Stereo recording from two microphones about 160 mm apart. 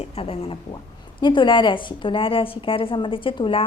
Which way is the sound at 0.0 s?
35° left (ahead or behind).